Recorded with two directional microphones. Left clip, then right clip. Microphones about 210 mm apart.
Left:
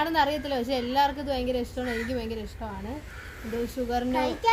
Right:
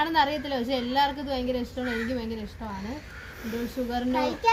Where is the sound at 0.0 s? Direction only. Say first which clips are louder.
Right 1 dB; 10° left (ahead or behind).